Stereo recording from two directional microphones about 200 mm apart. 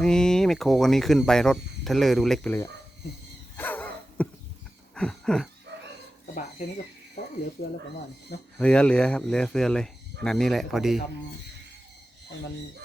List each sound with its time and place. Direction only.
0.0 s speech: 5° left (ahead or behind)
3.6 s dog: 10° left (ahead or behind)
4.9 s a sound: 5° left (ahead or behind)
5.7 s dog: 60° right (ahead or behind)
7.6 s speech: 45° left (ahead or behind)
8.5 s speech: 5° left (ahead or behind)